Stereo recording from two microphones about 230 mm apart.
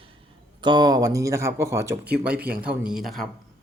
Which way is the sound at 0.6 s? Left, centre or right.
Centre.